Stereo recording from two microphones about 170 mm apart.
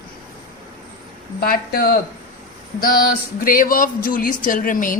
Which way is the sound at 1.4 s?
60° left (ahead or behind).